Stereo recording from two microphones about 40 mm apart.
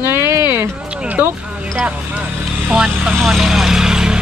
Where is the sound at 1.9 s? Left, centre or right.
Right.